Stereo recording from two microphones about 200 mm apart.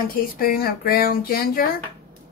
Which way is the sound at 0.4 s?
50° left (ahead or behind).